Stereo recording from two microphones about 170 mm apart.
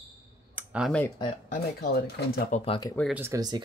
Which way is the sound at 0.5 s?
5° right (ahead or behind).